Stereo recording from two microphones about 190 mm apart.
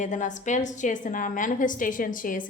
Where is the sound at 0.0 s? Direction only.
40° left (ahead or behind).